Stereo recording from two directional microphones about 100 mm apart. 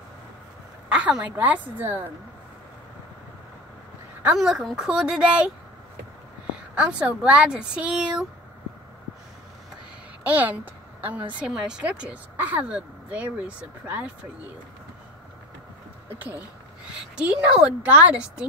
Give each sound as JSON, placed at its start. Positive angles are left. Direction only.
{"t": 0.8, "sound": "a woman's voice", "side_deg": -10}
{"t": 4.4, "sound": "speech", "side_deg": -5}
{"t": 6.7, "sound": "speech", "side_deg": -10}
{"t": 10.2, "sound": "a woman's voice", "side_deg": -15}
{"t": 16.2, "sound": "speech", "side_deg": -20}